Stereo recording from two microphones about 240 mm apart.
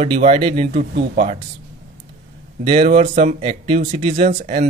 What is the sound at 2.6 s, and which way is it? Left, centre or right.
Speech, right.